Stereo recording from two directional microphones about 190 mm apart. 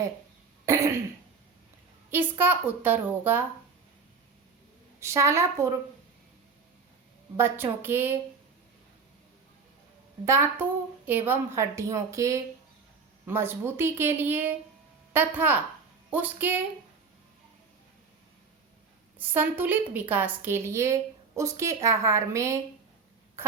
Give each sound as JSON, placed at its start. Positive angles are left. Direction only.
{"t": 0.6, "sound": "throat clearing", "side_deg": -15}
{"t": 2.4, "sound": "a woman's voice", "side_deg": -10}
{"t": 4.9, "sound": "a woman's voice", "side_deg": -15}
{"t": 7.3, "sound": "a woman's voice", "side_deg": -10}
{"t": 10.2, "sound": "a woman's voice", "side_deg": -15}
{"t": 19.2, "sound": "a woman's voice", "side_deg": -10}